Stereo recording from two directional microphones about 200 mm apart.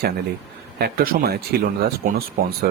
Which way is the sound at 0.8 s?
45° right (ahead or behind).